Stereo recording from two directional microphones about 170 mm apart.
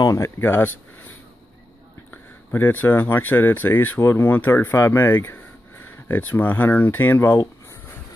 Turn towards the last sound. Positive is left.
turn(degrees=15)  # may be behind; listen again after turning